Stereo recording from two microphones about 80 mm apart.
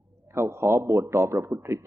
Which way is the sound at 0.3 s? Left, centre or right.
Right.